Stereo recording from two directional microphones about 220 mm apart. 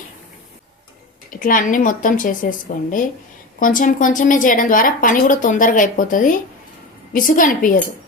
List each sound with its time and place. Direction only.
1.3 s a woman's voice: 40° left (ahead or behind)